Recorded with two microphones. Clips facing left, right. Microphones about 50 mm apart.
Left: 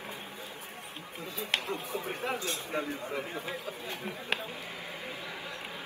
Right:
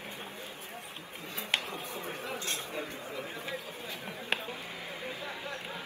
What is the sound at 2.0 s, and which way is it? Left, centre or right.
Chatter, left.